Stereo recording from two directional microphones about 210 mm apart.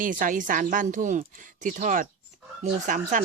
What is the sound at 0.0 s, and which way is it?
A woman's voice, 40° right (ahead or behind).